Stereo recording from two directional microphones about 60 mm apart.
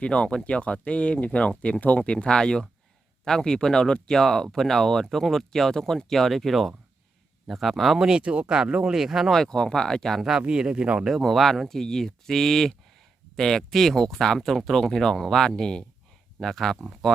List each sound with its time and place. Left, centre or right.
0.0 s speech: centre
9.3 s speech: centre
10.4 s speech: centre
11.1 s speech: centre